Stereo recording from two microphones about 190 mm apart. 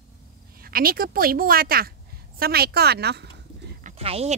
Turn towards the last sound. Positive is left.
turn(degrees=-30)  # may be behind; listen again after turning